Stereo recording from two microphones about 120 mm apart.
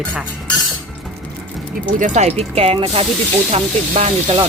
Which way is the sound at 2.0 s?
65° right (ahead or behind).